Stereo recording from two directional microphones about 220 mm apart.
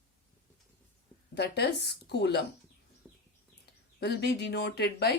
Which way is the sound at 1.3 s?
50° left (ahead or behind).